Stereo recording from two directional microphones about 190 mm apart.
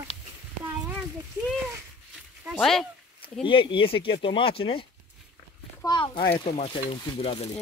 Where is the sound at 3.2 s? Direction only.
25° left (ahead or behind).